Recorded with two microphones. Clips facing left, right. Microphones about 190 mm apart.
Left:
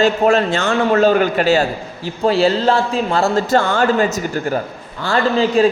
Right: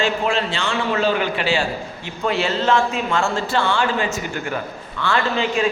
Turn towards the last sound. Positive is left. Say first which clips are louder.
# left 6 dB
turn(degrees=35)  # may be behind; listen again after turning